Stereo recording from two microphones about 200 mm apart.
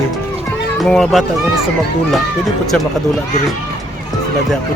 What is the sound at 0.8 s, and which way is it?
Speech, centre (ahead or behind).